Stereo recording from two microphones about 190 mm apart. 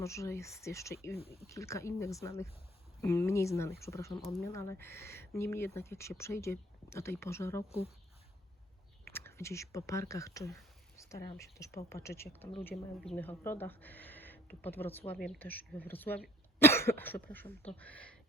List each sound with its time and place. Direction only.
0.0 s speech: 15° left (ahead or behind)
9.0 s speech: 15° left (ahead or behind)
12.7 s speech: centre (ahead or behind)